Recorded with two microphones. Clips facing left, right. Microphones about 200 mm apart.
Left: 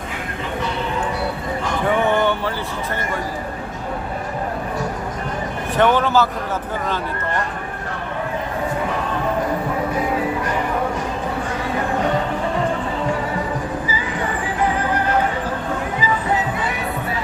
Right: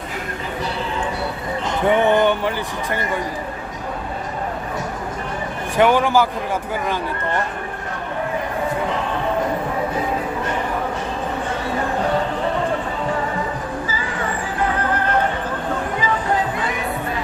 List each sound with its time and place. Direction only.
1.6 s speech: 20° right (ahead or behind)
5.7 s a man's voice: 10° right (ahead or behind)